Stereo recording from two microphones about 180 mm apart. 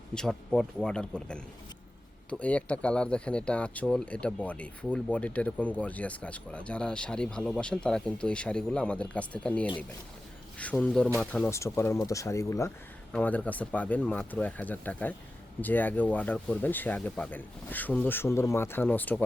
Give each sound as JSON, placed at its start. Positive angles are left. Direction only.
{"t": 0.1, "sound": "speech", "side_deg": 5}